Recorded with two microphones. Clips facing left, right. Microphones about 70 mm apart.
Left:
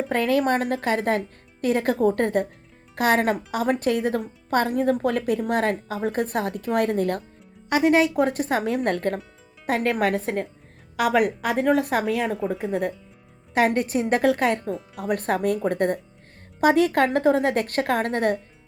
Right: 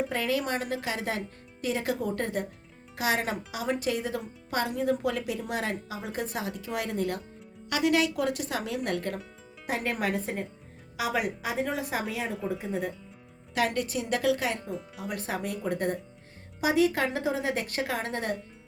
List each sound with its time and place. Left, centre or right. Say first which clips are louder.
0.1 s a woman's voice: left 8 dB; left
7.7 s speech: left 7 dB; left
9.6 s a woman's voice: left 8 dB; left
13.5 s speech: left 7 dB; left
14.7 s speech: left 7 dB; centre
15.0 s a woman's voice: left 11 dB; left